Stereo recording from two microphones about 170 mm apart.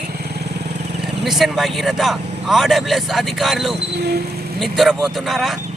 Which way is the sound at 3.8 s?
75° right (ahead or behind).